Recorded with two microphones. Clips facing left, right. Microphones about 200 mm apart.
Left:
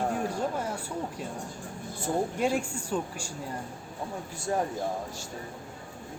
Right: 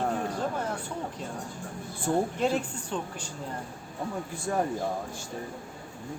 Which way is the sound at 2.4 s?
10° left (ahead or behind).